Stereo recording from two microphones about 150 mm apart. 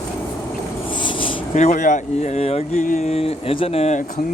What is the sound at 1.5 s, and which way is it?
Speech, 50° left (ahead or behind).